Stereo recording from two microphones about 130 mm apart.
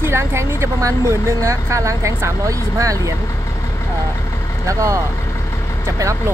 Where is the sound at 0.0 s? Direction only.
20° right (ahead or behind).